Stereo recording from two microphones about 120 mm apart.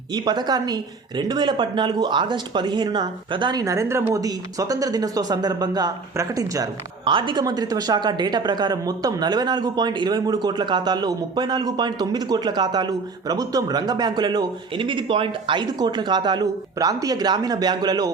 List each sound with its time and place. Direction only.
0.1 s speech: 35° right (ahead or behind)
7.0 s speech: 45° right (ahead or behind)